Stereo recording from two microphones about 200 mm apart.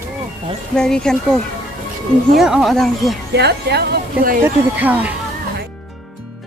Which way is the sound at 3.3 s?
55° right (ahead or behind).